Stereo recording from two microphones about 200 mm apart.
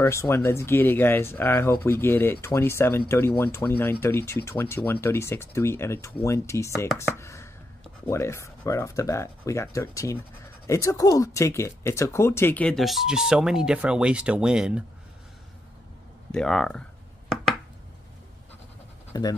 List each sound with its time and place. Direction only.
0.0 s speech: 15° left (ahead or behind); by 14.9 s 5° right (ahead or behind)
16.3 s speech: 5° left (ahead or behind)
19.1 s speech: 20° left (ahead or behind)